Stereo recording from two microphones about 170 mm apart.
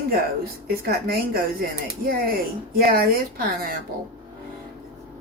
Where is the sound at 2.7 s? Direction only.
65° right (ahead or behind).